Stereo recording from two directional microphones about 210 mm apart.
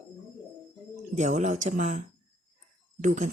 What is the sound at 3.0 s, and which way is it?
Speech, 35° right (ahead or behind).